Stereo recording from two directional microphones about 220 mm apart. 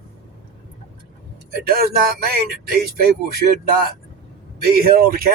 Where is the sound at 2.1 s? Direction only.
45° right (ahead or behind).